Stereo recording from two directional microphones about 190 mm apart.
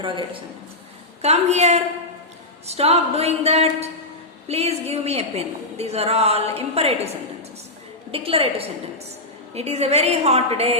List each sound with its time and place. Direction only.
0.0 s a man's voice: 25° right (ahead or behind)